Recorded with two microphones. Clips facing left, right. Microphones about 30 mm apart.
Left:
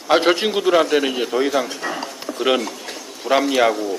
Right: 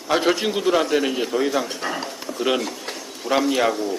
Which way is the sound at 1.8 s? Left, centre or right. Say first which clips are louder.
Left 1 dB; centre.